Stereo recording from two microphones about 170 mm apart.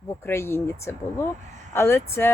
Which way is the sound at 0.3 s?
15° left (ahead or behind).